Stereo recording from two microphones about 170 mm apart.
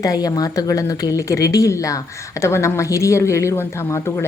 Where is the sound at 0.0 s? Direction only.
20° left (ahead or behind).